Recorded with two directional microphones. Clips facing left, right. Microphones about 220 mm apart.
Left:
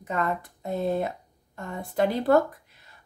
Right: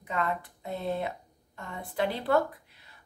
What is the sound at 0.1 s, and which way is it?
Speech, 45° left (ahead or behind).